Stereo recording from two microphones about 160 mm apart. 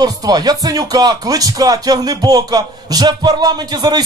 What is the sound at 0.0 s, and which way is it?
Speech, 25° right (ahead or behind).